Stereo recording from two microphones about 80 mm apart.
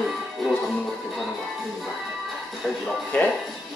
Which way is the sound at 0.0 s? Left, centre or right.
Centre.